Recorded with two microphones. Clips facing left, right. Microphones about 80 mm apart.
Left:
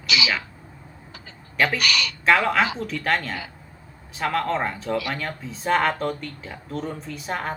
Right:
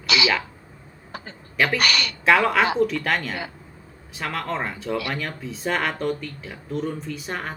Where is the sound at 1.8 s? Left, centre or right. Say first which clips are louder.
Right 2 dB; right.